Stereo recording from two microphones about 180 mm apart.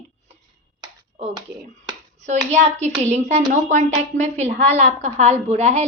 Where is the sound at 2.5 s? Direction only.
40° right (ahead or behind).